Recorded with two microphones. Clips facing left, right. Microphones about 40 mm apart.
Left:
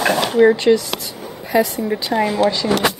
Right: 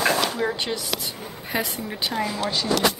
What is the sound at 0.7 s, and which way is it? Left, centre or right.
Speech, left.